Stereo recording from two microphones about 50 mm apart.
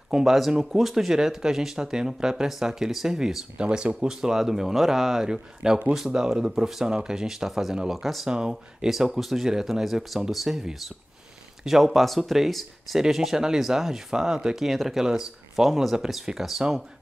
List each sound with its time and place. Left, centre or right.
0.1 s speech: centre